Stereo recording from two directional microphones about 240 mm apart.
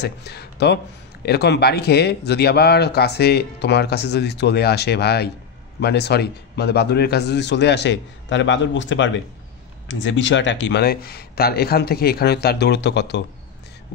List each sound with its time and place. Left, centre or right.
0.0 s speech: left